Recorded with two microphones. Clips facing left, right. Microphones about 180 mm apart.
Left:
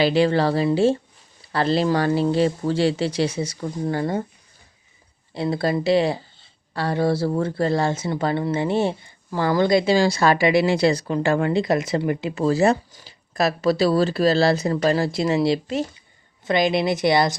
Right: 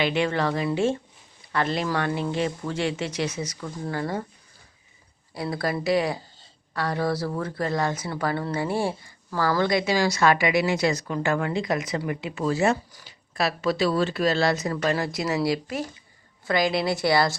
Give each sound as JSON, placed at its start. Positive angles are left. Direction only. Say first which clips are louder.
{"t": 0.0, "sound": "speech", "louder": "left 6 dB", "side_deg": 35}
{"t": 5.3, "sound": "speech", "louder": "left 5 dB", "side_deg": 25}
{"t": 12.9, "sound": "speech", "louder": "left 2 dB", "side_deg": 25}
{"t": 13.3, "sound": "speech", "louder": "left 5 dB", "side_deg": 40}